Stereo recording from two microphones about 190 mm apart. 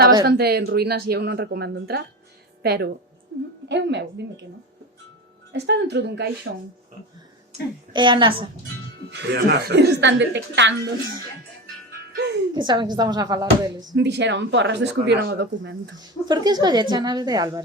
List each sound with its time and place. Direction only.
0.3 s speech: 55° right (ahead or behind)
5.5 s speech: 60° right (ahead or behind)
7.9 s a woman's voice: 25° right (ahead or behind)
9.0 s a woman's voice: 65° right (ahead or behind)
12.1 s a woman's voice: 65° right (ahead or behind)
12.5 s a woman's voice: 25° right (ahead or behind)
13.9 s speech: 65° right (ahead or behind)
16.2 s a woman's voice: 20° right (ahead or behind)